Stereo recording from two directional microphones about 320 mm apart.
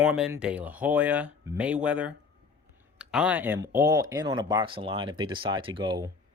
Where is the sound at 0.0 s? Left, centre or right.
Centre.